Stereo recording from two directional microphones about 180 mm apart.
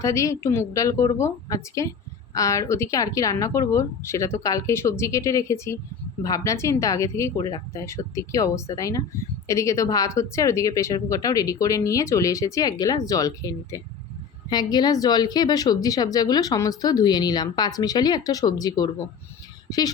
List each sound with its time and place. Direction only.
0.0 s a woman's voice: 15° left (ahead or behind)